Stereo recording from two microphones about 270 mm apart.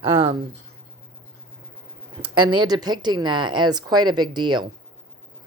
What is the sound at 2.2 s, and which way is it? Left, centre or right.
A woman's voice, centre.